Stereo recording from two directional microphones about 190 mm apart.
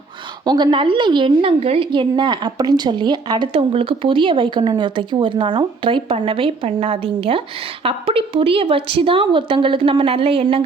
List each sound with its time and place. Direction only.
0.4 s a woman's voice: 20° right (ahead or behind)